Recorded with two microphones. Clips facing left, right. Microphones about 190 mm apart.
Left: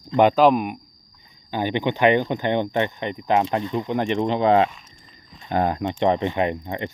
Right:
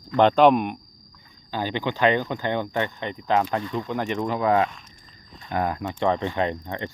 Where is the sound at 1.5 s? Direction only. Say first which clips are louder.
Left 4 dB; 20° left (ahead or behind).